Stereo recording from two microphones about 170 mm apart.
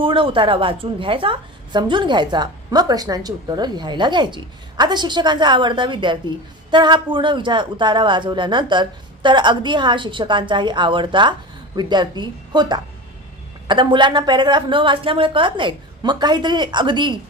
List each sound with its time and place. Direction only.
0.0 s a woman's voice: 30° right (ahead or behind)